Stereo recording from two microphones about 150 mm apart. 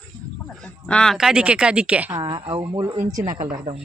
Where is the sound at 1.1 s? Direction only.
5° right (ahead or behind).